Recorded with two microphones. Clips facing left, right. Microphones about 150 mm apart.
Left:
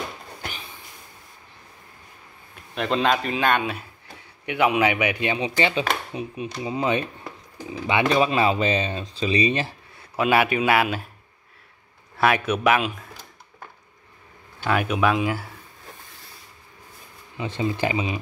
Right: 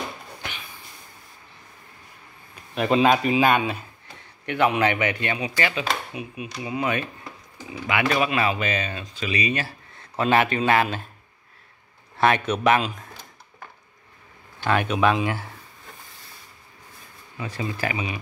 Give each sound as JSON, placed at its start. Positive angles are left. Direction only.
{"t": 0.4, "sound": "a sound", "side_deg": 40}
{"t": 2.5, "sound": "speech", "side_deg": -5}
{"t": 4.5, "sound": "a man's voice", "side_deg": 10}
{"t": 5.4, "sound": "speech", "side_deg": 25}
{"t": 9.9, "sound": "speech", "side_deg": 10}
{"t": 12.2, "sound": "a man's voice", "side_deg": 10}
{"t": 14.6, "sound": "speech", "side_deg": 5}
{"t": 17.4, "sound": "speech", "side_deg": 25}